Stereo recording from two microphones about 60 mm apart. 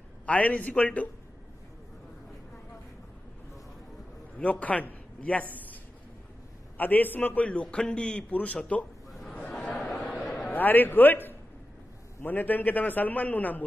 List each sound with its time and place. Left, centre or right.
0.3 s a man's voice: left
4.4 s a man's voice: left
6.8 s a man's voice: left
9.5 s a sound: centre; by 11.3 s left
12.2 s a man's voice: left